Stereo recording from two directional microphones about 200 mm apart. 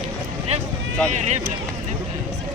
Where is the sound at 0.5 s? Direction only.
30° right (ahead or behind).